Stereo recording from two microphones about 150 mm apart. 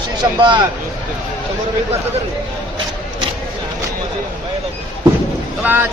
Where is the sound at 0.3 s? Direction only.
30° right (ahead or behind).